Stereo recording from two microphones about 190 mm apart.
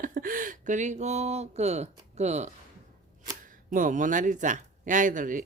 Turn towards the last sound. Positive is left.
turn(degrees=-45)  # may be behind; listen again after turning